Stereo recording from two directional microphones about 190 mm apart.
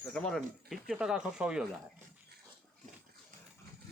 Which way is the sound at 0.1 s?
Centre (ahead or behind).